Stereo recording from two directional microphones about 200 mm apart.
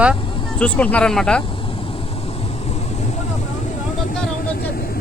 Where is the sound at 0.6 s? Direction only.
5° left (ahead or behind).